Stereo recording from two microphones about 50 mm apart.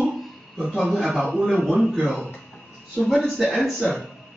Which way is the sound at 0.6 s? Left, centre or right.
Centre.